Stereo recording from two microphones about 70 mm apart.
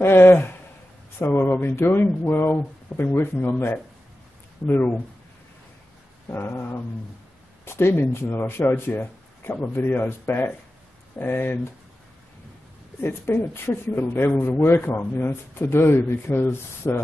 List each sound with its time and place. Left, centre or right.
0.0 s speech: left
6.2 s speech: left
13.0 s speech: left